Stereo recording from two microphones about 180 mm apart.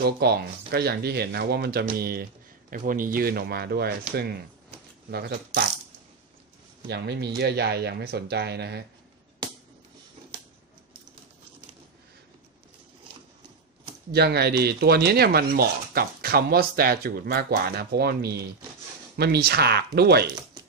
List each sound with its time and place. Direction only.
0.0 s speech: 60° right (ahead or behind)
6.9 s speech: 65° right (ahead or behind)
14.1 s speech: 65° right (ahead or behind)